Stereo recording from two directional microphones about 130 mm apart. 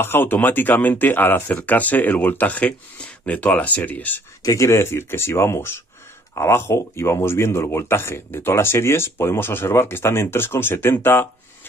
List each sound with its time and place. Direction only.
0.0 s speech: 15° left (ahead or behind)
4.4 s speech: 25° left (ahead or behind)